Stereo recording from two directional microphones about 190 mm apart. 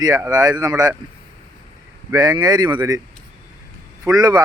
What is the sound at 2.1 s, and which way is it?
Speech, 20° right (ahead or behind).